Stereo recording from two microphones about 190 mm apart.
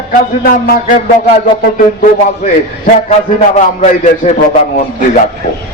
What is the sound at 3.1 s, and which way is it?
A man's voice, 35° left (ahead or behind).